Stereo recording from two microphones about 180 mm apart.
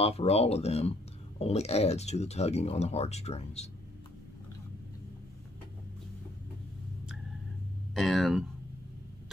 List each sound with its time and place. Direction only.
0.0 s speech: 35° left (ahead or behind)
7.9 s speech: centre (ahead or behind)